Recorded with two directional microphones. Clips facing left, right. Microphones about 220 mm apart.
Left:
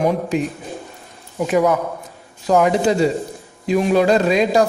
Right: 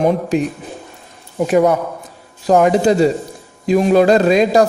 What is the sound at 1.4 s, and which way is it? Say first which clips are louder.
Speech: right 3 dB; 35° right (ahead or behind).